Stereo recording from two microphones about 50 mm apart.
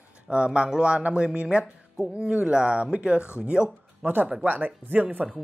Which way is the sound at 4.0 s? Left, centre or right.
Right.